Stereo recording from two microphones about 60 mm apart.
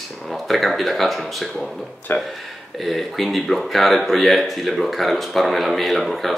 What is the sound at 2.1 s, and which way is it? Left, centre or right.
Speech, left.